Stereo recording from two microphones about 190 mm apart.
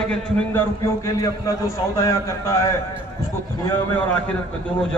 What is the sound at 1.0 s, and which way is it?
A man's voice, 15° left (ahead or behind).